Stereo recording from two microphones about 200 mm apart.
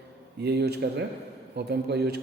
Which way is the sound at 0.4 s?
55° right (ahead or behind).